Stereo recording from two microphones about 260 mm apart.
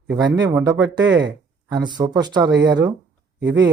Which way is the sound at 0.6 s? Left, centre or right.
Centre.